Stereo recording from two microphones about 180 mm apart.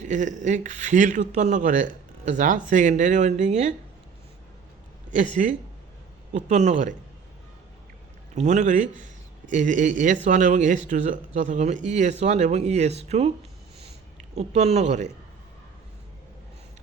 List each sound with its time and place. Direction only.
0.0 s speech: 40° right (ahead or behind)
5.1 s speech: 45° right (ahead or behind)
8.4 s speech: 40° right (ahead or behind)
14.3 s speech: 35° right (ahead or behind)